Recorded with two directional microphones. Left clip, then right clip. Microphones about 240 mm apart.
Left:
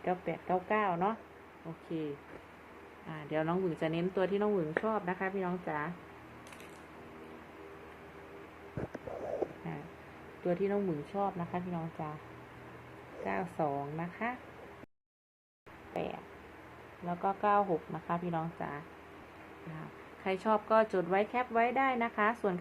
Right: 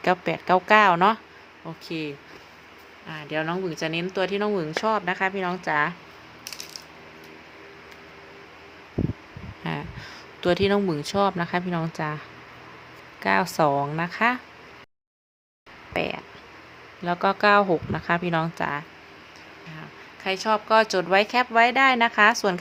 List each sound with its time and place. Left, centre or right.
0.0 s speech: right
1.9 s a woman's voice: right
3.1 s a woman's voice: centre; by 5.9 s right
10.4 s speech: right
13.2 s speech: right
16.0 s a woman's voice: right
17.1 s speech: right
20.2 s speech: centre
20.9 s a woman's voice: right